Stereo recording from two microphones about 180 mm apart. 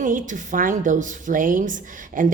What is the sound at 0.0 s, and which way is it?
A woman's voice, 45° right (ahead or behind).